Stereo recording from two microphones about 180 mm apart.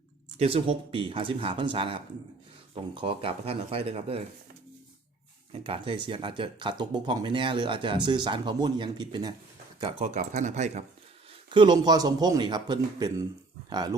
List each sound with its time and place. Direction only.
0.3 s speech: 30° right (ahead or behind)
5.6 s speech: 30° right (ahead or behind)
9.8 s speech: 40° right (ahead or behind)
11.5 s speech: 25° right (ahead or behind)